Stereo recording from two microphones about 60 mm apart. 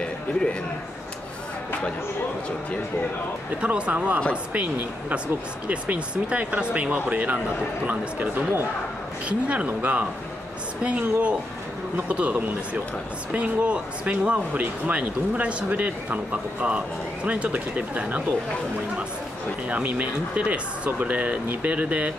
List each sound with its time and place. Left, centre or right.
0.0 s music: centre
3.6 s speech: right
5.7 s speech: centre
19.7 s speech: right